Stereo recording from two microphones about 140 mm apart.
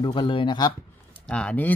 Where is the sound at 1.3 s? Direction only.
10° left (ahead or behind).